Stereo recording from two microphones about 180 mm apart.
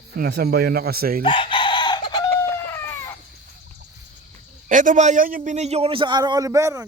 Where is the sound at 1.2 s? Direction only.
25° left (ahead or behind).